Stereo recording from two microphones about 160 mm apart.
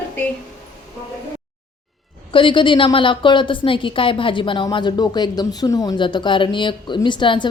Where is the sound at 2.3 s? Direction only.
30° left (ahead or behind).